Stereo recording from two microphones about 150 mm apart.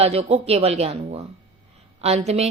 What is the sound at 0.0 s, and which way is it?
Speech, 45° right (ahead or behind).